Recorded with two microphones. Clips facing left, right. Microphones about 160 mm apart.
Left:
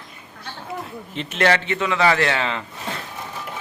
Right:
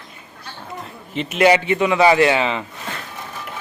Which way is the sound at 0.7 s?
Centre (ahead or behind).